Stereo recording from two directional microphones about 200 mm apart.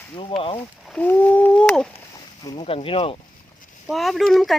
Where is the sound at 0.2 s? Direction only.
25° left (ahead or behind).